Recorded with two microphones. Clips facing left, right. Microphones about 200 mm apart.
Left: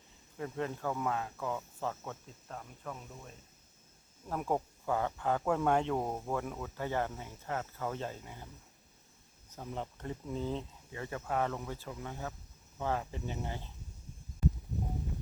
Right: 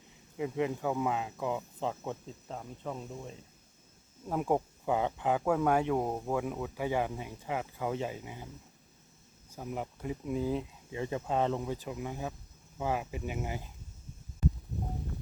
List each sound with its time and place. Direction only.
0.3 s speech: 15° right (ahead or behind)
4.3 s speech: 15° right (ahead or behind)
9.6 s speech: 10° right (ahead or behind)